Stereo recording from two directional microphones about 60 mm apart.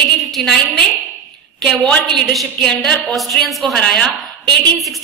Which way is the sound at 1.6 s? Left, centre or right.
Centre.